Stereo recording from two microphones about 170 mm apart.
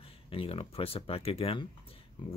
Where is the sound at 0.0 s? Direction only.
35° left (ahead or behind).